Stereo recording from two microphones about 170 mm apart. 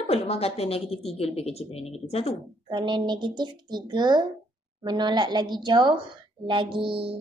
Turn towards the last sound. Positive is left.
turn(degrees=-30)  # may be behind; listen again after turning